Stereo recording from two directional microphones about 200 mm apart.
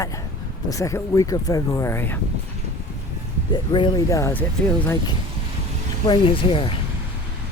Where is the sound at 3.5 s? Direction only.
25° left (ahead or behind).